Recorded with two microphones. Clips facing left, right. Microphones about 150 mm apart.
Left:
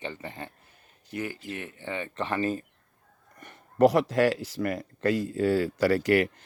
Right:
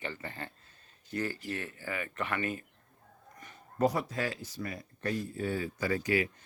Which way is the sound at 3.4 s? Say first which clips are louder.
Left 8 dB; 65° left (ahead or behind).